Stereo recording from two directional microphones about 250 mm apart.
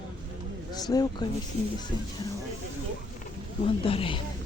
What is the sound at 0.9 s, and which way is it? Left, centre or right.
Speech, centre.